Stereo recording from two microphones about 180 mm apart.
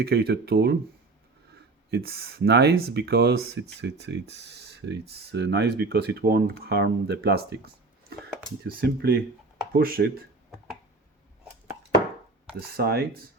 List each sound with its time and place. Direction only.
0.0 s speech: 60° right (ahead or behind)
1.9 s speech: 60° right (ahead or behind)
12.5 s speech: 60° right (ahead or behind)